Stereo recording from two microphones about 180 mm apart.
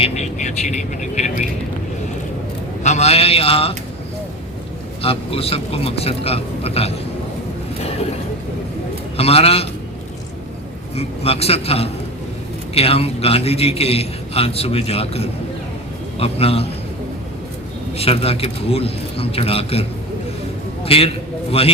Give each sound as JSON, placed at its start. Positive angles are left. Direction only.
{"t": 0.0, "sound": "a man's voice", "side_deg": 40}
{"t": 2.8, "sound": "a man's voice", "side_deg": 40}
{"t": 5.0, "sound": "a man's voice", "side_deg": 35}
{"t": 9.1, "sound": "a man's voice", "side_deg": 35}
{"t": 10.9, "sound": "a man's voice", "side_deg": 35}
{"t": 17.9, "sound": "a man's voice", "side_deg": 35}
{"t": 20.8, "sound": "a man's voice", "side_deg": 35}